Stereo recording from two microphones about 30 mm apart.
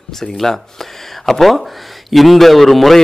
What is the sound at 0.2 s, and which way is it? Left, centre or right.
Speech, centre.